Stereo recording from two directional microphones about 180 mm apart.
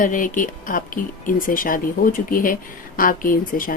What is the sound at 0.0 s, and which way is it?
Speech, 45° left (ahead or behind).